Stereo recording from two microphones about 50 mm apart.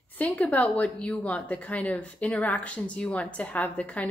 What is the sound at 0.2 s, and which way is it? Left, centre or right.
A woman's voice, left.